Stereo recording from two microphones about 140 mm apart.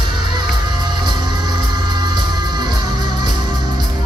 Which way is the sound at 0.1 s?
35° right (ahead or behind).